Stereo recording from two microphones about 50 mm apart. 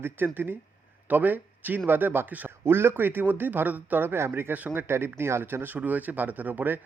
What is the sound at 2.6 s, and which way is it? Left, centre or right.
Speech, right.